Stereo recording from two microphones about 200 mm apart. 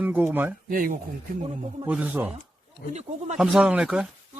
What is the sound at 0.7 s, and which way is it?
Speech, 45° right (ahead or behind).